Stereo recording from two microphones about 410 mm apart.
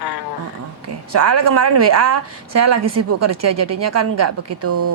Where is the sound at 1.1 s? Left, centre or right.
Right.